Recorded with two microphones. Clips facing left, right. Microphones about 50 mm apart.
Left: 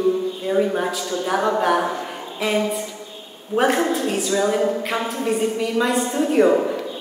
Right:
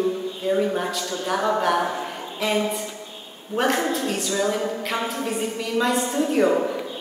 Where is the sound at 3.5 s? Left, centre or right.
Centre.